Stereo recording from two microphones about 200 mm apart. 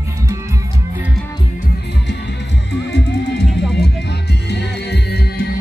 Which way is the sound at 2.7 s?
60° left (ahead or behind).